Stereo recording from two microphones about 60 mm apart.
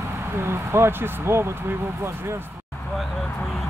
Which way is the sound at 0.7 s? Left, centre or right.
Right.